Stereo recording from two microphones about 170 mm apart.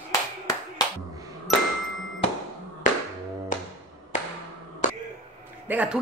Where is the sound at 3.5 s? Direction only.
50° left (ahead or behind).